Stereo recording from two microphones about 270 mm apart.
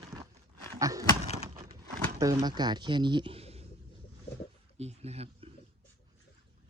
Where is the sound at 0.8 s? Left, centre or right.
Centre.